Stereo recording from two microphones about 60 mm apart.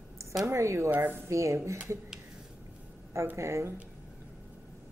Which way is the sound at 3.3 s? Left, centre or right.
Right.